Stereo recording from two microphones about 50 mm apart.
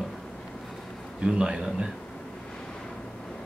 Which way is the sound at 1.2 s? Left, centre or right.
Centre.